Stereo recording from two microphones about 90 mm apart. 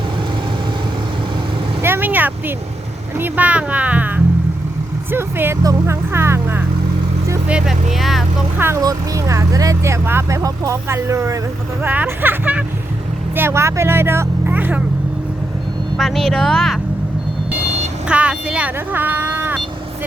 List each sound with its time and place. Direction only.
1.8 s vehicle: 25° right (ahead or behind)
3.2 s speech: 20° right (ahead or behind)
7.4 s speech: 10° right (ahead or behind)
8.5 s speech: 25° right (ahead or behind)
8.8 s speech: 40° right (ahead or behind)
11.8 s speech: 20° right (ahead or behind)
16.0 s speech: centre (ahead or behind)
18.1 s speech: 15° right (ahead or behind)